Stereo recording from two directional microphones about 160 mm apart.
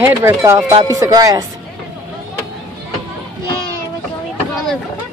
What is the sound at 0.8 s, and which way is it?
Music, 20° right (ahead or behind).